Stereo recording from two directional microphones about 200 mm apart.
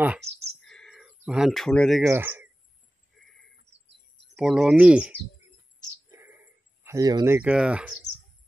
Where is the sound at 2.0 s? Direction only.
10° right (ahead or behind).